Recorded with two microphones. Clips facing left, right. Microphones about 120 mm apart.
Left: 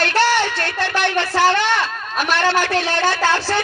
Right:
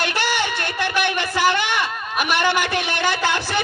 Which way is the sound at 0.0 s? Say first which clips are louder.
Left 5 dB; 15° right (ahead or behind).